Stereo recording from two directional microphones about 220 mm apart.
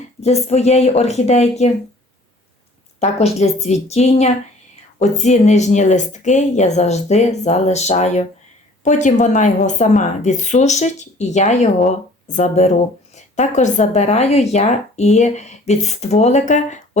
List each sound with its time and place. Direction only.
0.2 s speech: 30° left (ahead or behind)
3.0 s a woman's voice: 30° left (ahead or behind)